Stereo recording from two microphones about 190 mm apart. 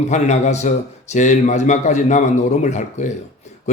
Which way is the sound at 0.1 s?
35° left (ahead or behind).